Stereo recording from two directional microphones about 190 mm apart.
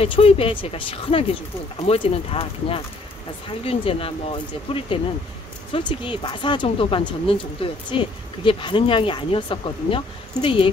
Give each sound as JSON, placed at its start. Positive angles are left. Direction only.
{"t": 0.0, "sound": "speech", "side_deg": 30}